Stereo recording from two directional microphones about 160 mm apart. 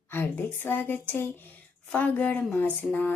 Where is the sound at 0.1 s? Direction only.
15° left (ahead or behind).